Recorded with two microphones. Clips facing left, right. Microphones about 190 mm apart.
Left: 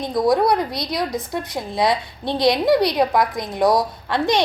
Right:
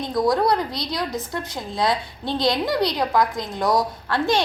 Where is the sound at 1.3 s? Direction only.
15° left (ahead or behind).